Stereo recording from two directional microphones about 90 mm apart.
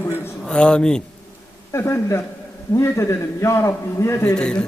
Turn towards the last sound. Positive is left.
turn(degrees=10)  # may be behind; listen again after turning